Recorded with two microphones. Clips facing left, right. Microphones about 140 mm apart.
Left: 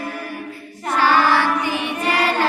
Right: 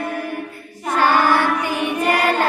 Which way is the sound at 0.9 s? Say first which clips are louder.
Even; 50° right (ahead or behind).